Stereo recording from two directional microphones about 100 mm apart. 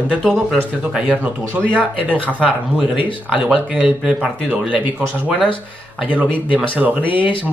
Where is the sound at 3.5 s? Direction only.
10° right (ahead or behind).